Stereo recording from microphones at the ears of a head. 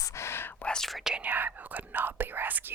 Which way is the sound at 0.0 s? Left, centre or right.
Left.